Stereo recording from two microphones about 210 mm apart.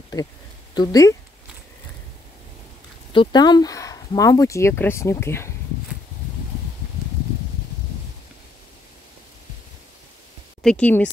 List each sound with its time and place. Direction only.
0.7 s speech: 15° left (ahead or behind)
3.1 s speech: 20° left (ahead or behind)
10.6 s speech: 5° left (ahead or behind)